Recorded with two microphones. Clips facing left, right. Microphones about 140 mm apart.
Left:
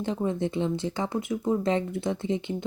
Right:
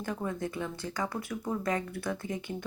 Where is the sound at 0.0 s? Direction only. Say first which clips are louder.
Left 6 dB; 25° left (ahead or behind).